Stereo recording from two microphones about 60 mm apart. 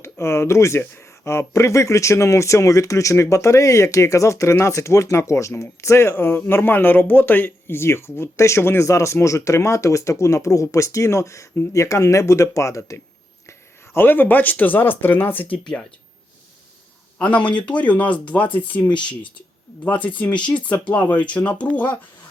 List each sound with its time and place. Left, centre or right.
0.0 s speech: left
7.8 s speech: left
8.8 s speech: left
13.5 s speech: left
15.6 s speech: centre
17.2 s speech: left
19.8 s speech: left